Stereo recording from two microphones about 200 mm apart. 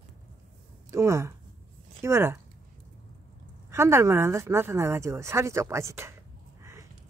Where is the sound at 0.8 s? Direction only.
15° right (ahead or behind).